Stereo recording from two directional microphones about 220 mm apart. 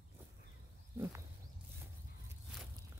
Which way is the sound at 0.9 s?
10° right (ahead or behind).